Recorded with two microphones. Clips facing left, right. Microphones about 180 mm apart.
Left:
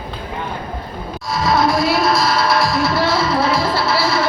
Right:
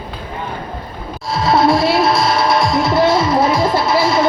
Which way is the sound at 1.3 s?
30° right (ahead or behind).